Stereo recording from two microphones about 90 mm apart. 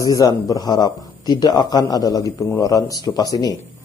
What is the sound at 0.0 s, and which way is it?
A man's voice, 40° left (ahead or behind).